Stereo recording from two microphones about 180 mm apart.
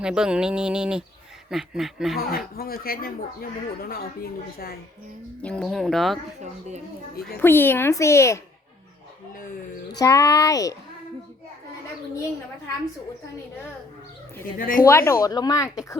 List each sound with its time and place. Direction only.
0.0 s speech: 5° right (ahead or behind)
2.1 s a woman's voice: 55° left (ahead or behind)
5.4 s speech: 5° left (ahead or behind)
6.4 s a woman's voice: 40° right (ahead or behind)
7.4 s speech: 10° left (ahead or behind)
10.0 s a child's voice: 20° left (ahead or behind)
14.4 s a woman's voice: 50° left (ahead or behind)
14.8 s speech: 15° left (ahead or behind)